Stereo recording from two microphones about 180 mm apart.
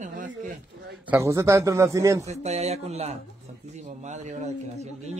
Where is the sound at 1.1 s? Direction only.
15° right (ahead or behind).